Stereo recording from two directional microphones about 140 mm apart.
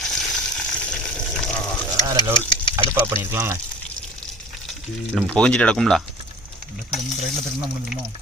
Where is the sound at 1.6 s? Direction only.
15° left (ahead or behind).